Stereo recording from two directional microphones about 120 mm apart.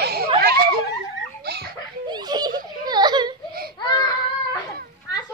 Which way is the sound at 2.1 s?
35° right (ahead or behind).